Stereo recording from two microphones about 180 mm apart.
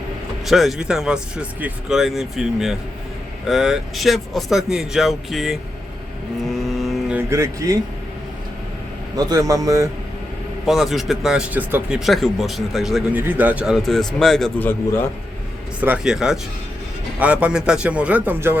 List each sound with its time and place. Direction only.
0.4 s speech: centre (ahead or behind)
6.5 s vehicle: centre (ahead or behind)
7.2 s speech: 15° right (ahead or behind)
9.1 s speech: 20° right (ahead or behind)
10.7 s speech: centre (ahead or behind)
15.8 s speech: 5° right (ahead or behind)